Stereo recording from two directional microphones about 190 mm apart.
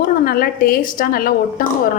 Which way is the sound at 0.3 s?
50° left (ahead or behind).